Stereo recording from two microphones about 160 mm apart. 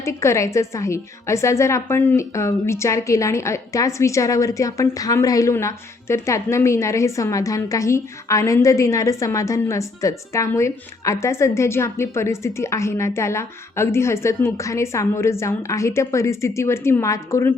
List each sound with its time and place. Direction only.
0.0 s a woman's voice: 20° left (ahead or behind)